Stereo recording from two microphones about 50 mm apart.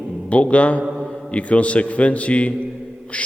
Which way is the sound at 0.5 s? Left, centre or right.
Left.